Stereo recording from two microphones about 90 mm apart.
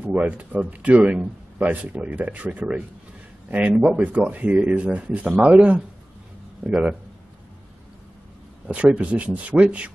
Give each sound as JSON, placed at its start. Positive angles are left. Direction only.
{"t": 0.0, "sound": "a man's voice", "side_deg": -20}
{"t": 8.6, "sound": "a man's voice", "side_deg": -15}